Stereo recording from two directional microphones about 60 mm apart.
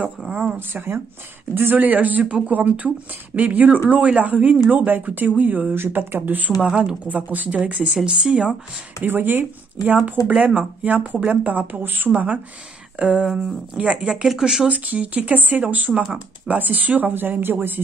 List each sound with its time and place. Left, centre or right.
0.3 s speech: centre
0.6 s speech: right
1.8 s speech: right
6.6 s speech: centre
7.1 s speech: right
9.0 s speech: right; by 14.7 s centre
14.7 s speech: right